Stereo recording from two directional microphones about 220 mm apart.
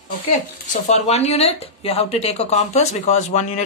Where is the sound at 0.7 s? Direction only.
30° left (ahead or behind).